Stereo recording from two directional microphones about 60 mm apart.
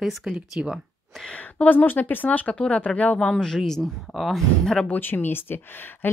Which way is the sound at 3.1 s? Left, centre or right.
Centre.